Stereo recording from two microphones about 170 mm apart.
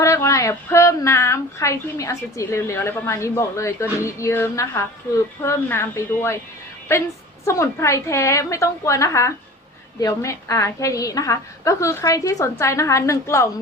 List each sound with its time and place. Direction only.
0.0 s speech: 15° left (ahead or behind)